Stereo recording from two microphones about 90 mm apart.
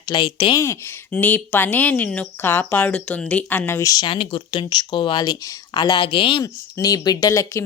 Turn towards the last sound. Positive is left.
turn(degrees=35)  # may be behind; listen again after turning